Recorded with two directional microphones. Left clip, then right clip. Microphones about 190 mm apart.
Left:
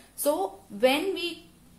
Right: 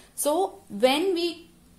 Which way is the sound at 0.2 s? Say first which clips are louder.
Right 2 dB; 40° right (ahead or behind).